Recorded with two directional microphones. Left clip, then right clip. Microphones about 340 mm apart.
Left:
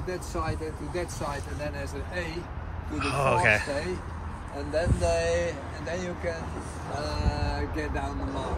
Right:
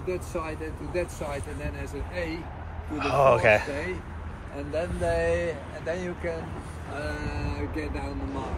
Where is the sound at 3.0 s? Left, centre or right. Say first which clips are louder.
Right 4 dB; centre.